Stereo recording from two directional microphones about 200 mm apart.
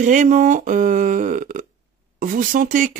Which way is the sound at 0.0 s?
40° right (ahead or behind).